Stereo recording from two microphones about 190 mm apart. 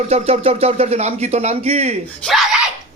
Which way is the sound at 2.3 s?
Centre (ahead or behind).